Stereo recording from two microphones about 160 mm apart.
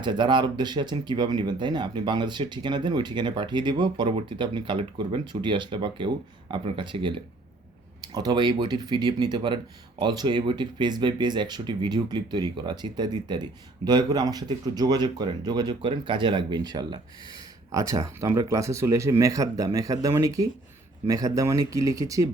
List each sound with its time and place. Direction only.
0.0 s speech: 30° right (ahead or behind)